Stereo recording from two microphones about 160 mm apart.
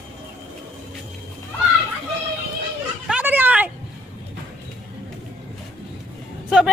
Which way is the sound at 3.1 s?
10° right (ahead or behind).